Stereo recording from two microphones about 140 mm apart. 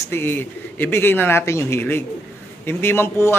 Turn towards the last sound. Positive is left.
turn(degrees=15)  # may be behind; listen again after turning